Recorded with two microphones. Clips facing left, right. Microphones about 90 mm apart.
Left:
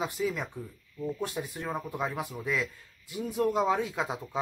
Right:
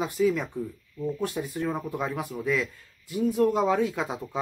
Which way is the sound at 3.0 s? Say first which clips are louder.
Right 9 dB; 20° left (ahead or behind).